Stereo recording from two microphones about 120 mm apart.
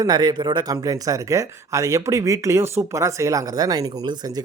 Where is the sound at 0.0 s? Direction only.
35° right (ahead or behind).